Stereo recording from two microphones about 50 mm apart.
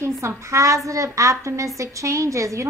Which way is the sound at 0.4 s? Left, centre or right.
Right.